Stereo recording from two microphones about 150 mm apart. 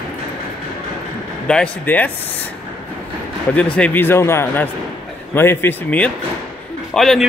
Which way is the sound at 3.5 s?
10° left (ahead or behind).